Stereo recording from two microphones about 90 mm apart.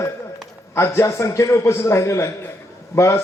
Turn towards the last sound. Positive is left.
turn(degrees=30)  # may be behind; listen again after turning